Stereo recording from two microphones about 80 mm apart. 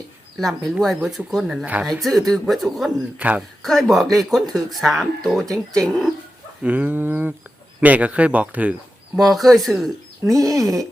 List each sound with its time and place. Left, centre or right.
0.3 s speech: centre
1.6 s a woman's voice: centre
1.9 s speech: centre
3.2 s a woman's voice: centre
3.6 s speech: centre
6.6 s speech: centre
9.1 s speech: centre
10.2 s speech: right
10.6 s speech: centre